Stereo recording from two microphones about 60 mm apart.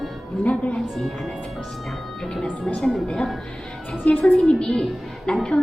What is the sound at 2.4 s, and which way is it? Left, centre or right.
Speech, centre.